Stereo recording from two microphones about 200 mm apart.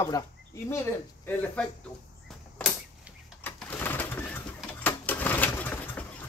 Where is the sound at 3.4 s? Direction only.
10° left (ahead or behind).